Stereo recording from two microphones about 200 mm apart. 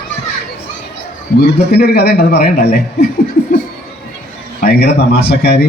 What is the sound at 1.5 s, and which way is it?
A man's voice, 50° left (ahead or behind).